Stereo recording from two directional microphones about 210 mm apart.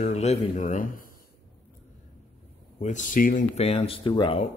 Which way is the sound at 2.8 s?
35° left (ahead or behind).